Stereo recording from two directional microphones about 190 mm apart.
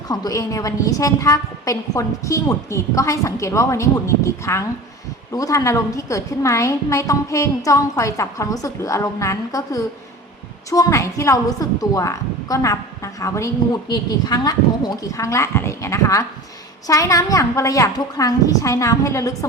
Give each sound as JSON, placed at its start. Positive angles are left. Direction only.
{"t": 0.1, "sound": "a woman's voice", "side_deg": 20}